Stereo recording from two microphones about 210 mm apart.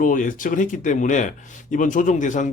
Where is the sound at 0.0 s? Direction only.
40° left (ahead or behind).